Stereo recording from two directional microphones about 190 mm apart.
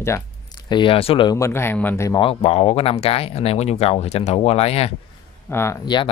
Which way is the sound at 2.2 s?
30° left (ahead or behind).